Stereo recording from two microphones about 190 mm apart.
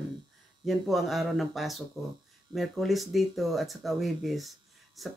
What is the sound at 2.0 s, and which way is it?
Speech, 15° right (ahead or behind).